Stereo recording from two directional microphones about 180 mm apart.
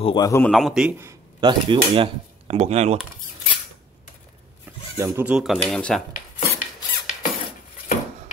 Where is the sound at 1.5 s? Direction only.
30° right (ahead or behind).